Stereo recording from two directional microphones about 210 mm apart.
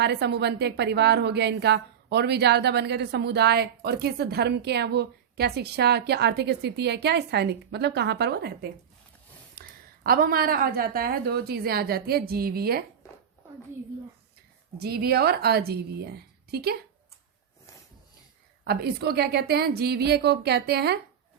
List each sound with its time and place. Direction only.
0.0 s a woman's voice: 50° right (ahead or behind)
14.8 s a woman's voice: 50° right (ahead or behind)
18.6 s a woman's voice: 50° right (ahead or behind)